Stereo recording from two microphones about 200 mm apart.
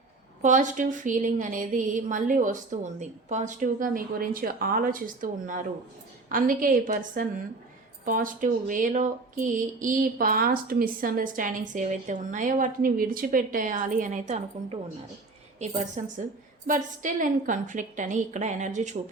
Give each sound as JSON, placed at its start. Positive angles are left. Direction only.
{"t": 0.4, "sound": "speech", "side_deg": -40}